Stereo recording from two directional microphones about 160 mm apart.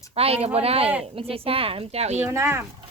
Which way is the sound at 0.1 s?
40° right (ahead or behind).